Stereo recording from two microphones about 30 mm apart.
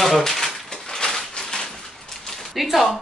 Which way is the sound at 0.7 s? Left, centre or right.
Left.